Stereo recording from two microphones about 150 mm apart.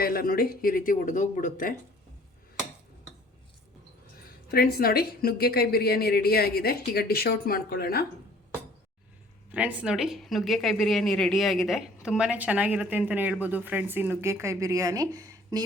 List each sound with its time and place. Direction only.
0.0 s speech: 75° left (ahead or behind); by 1.7 s 60° left (ahead or behind)
4.5 s a woman's voice: 90° left
9.5 s speech: 10° right (ahead or behind)